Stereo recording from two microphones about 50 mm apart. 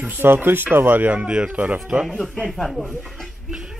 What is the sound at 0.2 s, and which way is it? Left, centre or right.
Speech, right.